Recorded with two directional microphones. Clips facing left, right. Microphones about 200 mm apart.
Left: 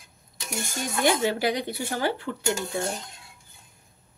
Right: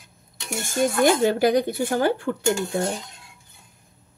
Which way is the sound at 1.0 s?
50° right (ahead or behind).